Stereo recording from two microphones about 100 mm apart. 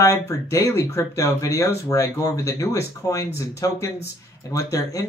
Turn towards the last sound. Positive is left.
turn(degrees=35)  # may be behind; listen again after turning